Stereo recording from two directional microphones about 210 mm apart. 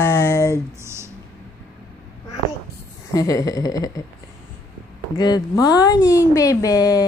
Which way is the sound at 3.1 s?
15° left (ahead or behind).